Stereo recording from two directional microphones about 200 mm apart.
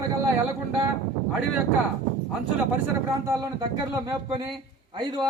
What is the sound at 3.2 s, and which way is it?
A man's voice, 20° right (ahead or behind).